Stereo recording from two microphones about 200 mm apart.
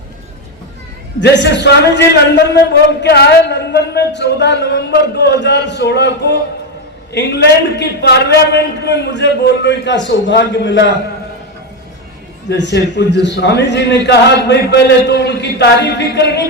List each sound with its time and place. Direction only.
1.2 s a man's voice: 60° left (ahead or behind)
12.5 s a man's voice: 60° left (ahead or behind)